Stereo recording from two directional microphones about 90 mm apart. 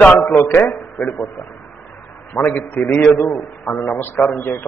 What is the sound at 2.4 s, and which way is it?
A man's voice, 20° left (ahead or behind).